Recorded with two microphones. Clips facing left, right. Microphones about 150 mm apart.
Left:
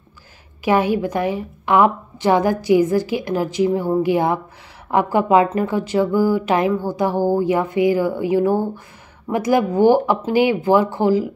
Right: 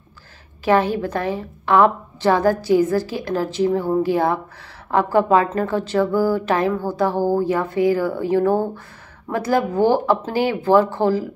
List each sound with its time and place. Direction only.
0.7 s a woman's voice: 15° left (ahead or behind)